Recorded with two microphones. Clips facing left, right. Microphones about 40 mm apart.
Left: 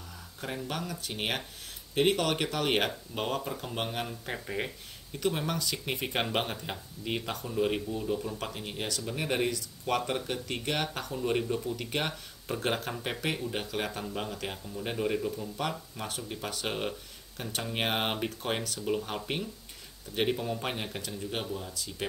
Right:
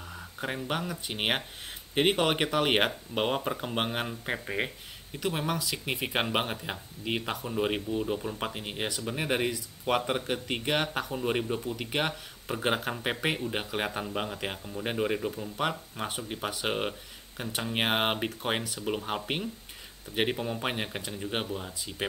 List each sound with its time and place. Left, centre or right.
0.1 s speech: right
5.2 s speech: centre